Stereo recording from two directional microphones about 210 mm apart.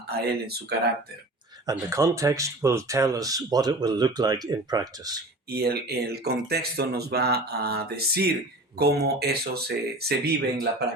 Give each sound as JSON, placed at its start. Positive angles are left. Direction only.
{"t": 0.1, "sound": "speech", "side_deg": -50}
{"t": 1.7, "sound": "speech", "side_deg": -15}
{"t": 5.5, "sound": "speech", "side_deg": -50}